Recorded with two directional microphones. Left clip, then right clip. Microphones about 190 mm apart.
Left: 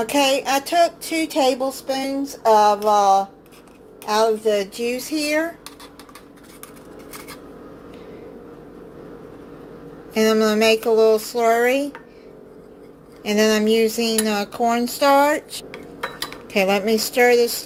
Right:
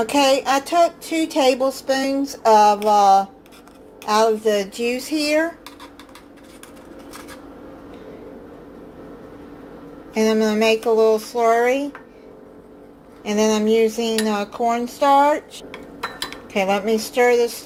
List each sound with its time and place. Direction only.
0.0 s a sound: centre (ahead or behind)
0.7 s speech: 15° left (ahead or behind)
1.3 s a sound: centre (ahead or behind)
10.2 s speech: 15° left (ahead or behind)
13.2 s speech: 20° left (ahead or behind)
14.5 s speech: 30° left (ahead or behind)
16.5 s speech: 20° left (ahead or behind)